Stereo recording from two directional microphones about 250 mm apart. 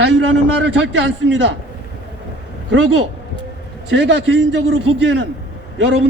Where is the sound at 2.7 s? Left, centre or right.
Right.